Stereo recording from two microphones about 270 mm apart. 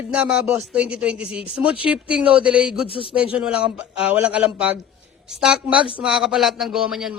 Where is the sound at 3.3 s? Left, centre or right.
Centre.